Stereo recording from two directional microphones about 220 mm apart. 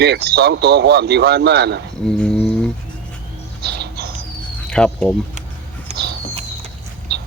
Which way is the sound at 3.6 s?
50° right (ahead or behind).